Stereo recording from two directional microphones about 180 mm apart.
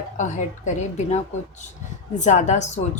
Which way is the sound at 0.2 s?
45° left (ahead or behind).